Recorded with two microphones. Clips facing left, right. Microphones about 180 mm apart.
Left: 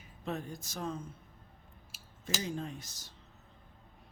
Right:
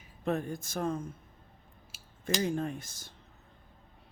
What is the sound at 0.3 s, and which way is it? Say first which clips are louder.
Speech: right 7 dB; 55° right (ahead or behind).